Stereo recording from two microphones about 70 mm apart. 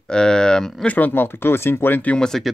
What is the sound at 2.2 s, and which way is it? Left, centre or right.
Speech, centre.